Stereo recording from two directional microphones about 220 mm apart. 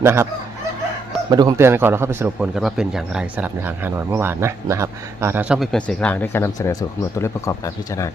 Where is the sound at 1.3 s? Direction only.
15° right (ahead or behind).